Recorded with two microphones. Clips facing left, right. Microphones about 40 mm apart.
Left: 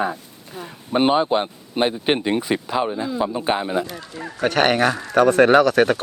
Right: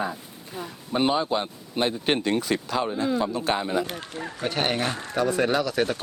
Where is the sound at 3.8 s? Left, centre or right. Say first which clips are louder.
Even; right.